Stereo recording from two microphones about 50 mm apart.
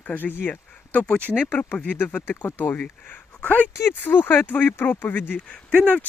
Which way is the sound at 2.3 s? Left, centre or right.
Left.